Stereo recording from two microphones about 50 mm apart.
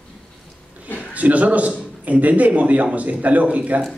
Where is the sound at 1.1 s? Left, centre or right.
Right.